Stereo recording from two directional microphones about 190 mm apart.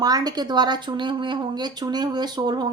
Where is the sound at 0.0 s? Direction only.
20° right (ahead or behind).